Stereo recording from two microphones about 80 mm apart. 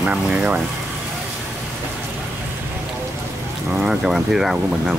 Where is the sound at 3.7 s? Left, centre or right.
Centre.